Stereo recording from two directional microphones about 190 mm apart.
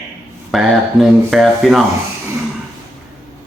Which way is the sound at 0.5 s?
Centre (ahead or behind).